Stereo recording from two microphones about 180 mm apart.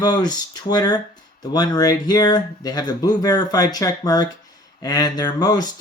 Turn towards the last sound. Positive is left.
turn(degrees=20)  # may be behind; listen again after turning